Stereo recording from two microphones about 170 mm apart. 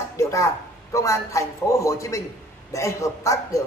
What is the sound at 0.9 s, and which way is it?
A man's voice, 20° left (ahead or behind).